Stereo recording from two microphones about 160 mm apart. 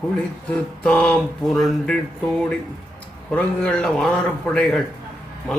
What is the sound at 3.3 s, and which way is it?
A man's voice, 10° left (ahead or behind).